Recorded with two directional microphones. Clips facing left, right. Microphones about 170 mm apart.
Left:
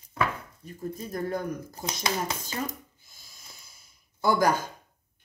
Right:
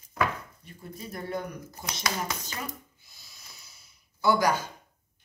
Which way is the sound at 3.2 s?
50° left (ahead or behind).